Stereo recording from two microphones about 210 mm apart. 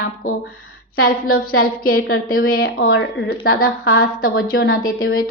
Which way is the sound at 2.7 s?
45° left (ahead or behind).